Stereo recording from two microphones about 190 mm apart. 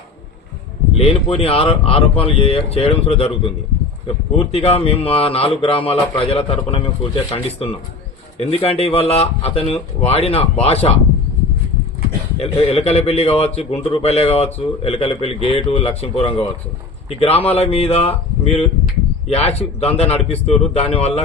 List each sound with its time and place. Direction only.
0.9 s a man's voice: 30° left (ahead or behind)
12.4 s a man's voice: 30° left (ahead or behind)